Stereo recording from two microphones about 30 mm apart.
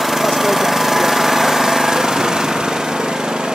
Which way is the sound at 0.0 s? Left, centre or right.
Centre.